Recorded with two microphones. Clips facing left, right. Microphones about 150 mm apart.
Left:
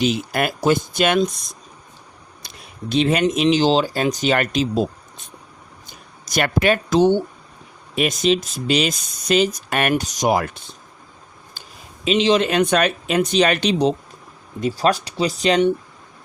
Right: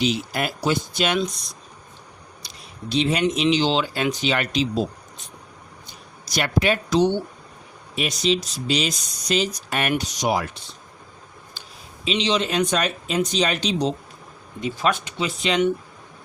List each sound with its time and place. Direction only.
0.0 s speech: 50° left (ahead or behind)
2.4 s a sound: 50° left (ahead or behind)
2.9 s speech: 55° left (ahead or behind)
9.9 s speech: 45° left (ahead or behind)
12.0 s speech: 50° left (ahead or behind)
14.6 s speech: 40° left (ahead or behind)